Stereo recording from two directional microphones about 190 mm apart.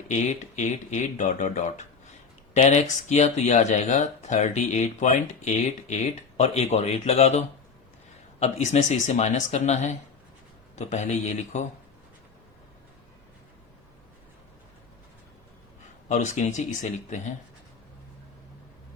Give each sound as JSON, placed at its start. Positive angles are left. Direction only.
{"t": 0.1, "sound": "speech", "side_deg": 40}
{"t": 16.0, "sound": "speech", "side_deg": 40}